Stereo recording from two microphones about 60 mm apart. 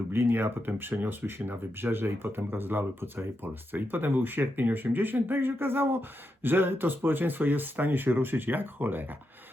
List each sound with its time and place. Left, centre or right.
0.1 s speech: right